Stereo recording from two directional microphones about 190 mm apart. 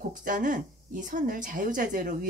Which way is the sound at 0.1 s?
45° right (ahead or behind).